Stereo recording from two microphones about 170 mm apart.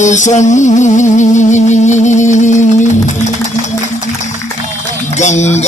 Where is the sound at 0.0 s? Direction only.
45° left (ahead or behind).